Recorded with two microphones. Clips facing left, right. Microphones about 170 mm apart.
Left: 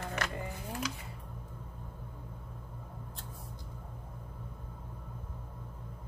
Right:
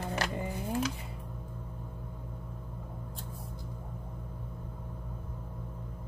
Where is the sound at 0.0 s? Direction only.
30° right (ahead or behind).